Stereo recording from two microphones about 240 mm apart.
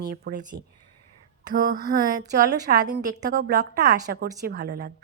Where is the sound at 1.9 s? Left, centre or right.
Right.